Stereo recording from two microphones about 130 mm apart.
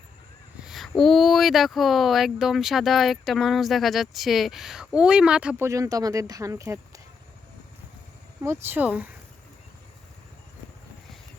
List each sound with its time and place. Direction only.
0.6 s speech: centre (ahead or behind)
5.6 s speech: 25° right (ahead or behind)
8.4 s speech: 20° right (ahead or behind)